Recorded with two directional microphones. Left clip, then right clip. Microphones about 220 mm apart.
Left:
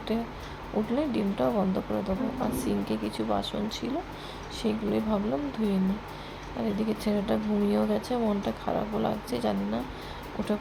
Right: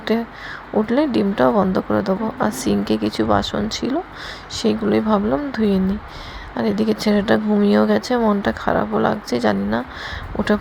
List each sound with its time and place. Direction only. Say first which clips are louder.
0.1 s speech: right 10 dB; 25° right (ahead or behind)